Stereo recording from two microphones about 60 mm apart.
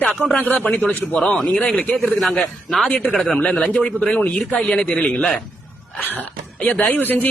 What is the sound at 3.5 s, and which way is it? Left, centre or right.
A man's voice, centre.